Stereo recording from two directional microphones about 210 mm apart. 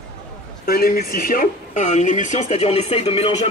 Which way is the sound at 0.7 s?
45° left (ahead or behind).